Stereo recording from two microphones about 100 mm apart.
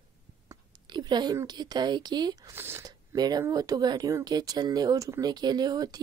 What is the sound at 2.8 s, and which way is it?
Speech, 40° right (ahead or behind).